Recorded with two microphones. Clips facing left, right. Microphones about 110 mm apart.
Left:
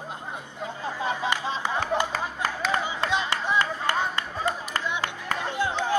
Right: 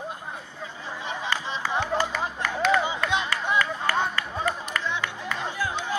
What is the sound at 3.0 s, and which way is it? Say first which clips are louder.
Music: even; 30° left (ahead or behind).